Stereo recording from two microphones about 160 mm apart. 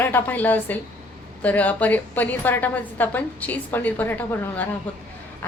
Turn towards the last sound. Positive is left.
turn(degrees=10)  # may be behind; listen again after turning